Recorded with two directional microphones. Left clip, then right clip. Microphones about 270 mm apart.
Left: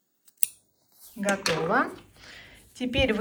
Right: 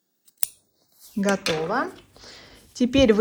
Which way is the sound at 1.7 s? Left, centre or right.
Centre.